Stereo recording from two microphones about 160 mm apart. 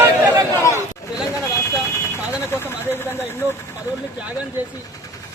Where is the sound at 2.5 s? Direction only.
15° left (ahead or behind).